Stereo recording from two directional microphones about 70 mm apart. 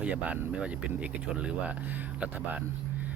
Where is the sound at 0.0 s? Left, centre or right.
Centre.